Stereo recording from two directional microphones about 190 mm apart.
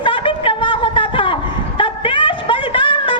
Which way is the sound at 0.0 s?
25° left (ahead or behind).